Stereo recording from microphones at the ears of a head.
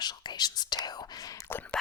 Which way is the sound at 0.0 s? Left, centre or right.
Left.